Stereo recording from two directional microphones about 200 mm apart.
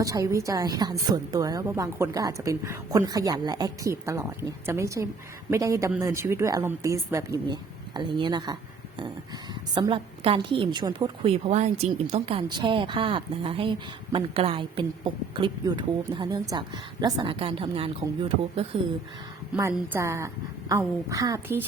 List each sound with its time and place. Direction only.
0.0 s a woman's voice: 15° right (ahead or behind)
9.7 s a woman's voice: 25° right (ahead or behind)
19.7 s a woman's voice: 10° right (ahead or behind)